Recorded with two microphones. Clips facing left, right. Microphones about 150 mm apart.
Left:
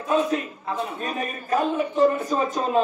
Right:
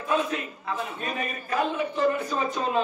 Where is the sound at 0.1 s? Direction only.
40° left (ahead or behind).